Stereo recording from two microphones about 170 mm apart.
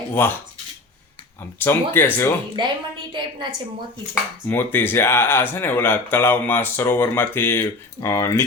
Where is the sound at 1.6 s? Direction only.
10° left (ahead or behind).